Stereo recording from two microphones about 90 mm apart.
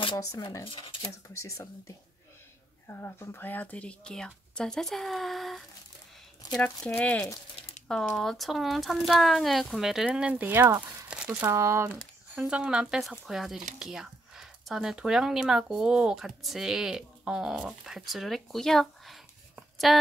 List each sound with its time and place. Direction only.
0.1 s speech: 35° left (ahead or behind)
0.7 s speech: 50° left (ahead or behind)
1.3 s a woman's voice: 35° left (ahead or behind); by 7.0 s 10° left (ahead or behind)
7.0 s speech: 20° left (ahead or behind)
8.2 s speech: centre (ahead or behind); by 11.1 s 25° right (ahead or behind)
11.1 s a sound: 10° right (ahead or behind)
11.5 s speech: 30° right (ahead or behind)
12.4 s speech: 15° right (ahead or behind); by 19.1 s 5° left (ahead or behind)
19.9 s a sound: centre (ahead or behind)